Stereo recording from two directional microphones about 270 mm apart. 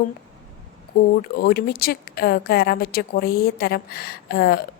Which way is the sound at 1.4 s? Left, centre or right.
Left.